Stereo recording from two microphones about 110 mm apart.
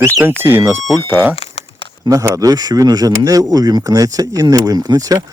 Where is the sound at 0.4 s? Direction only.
20° right (ahead or behind).